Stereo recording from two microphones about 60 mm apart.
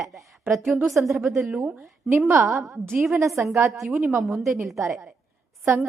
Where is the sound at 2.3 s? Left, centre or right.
Right.